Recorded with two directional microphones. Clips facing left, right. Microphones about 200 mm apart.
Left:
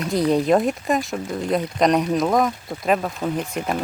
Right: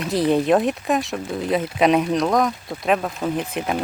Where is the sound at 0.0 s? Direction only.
Centre (ahead or behind).